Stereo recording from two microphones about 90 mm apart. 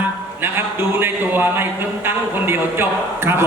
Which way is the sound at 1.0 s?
25° right (ahead or behind).